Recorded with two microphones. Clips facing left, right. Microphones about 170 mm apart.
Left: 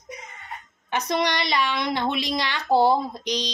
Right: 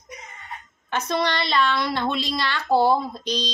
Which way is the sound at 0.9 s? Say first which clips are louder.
Even; 15° left (ahead or behind).